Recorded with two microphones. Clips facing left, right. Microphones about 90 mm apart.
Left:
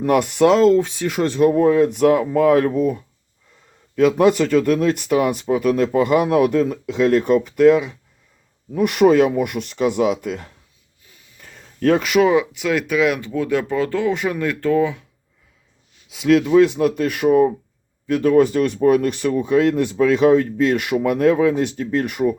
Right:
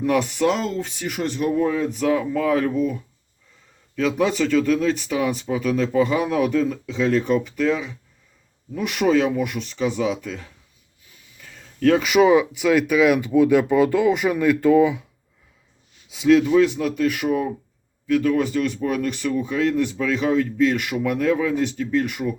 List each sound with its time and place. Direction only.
0.0 s speech: 50° left (ahead or behind); by 1.5 s 75° left (ahead or behind)
1.5 s speech: 50° left (ahead or behind)
3.9 s speech: 50° left (ahead or behind)
11.4 s a sound: 45° left (ahead or behind)
11.9 s speech: centre (ahead or behind)
16.0 s speech: centre (ahead or behind)
16.6 s speech: 45° left (ahead or behind)